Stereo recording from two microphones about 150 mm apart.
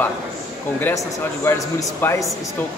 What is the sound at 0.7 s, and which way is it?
Speech, 15° left (ahead or behind).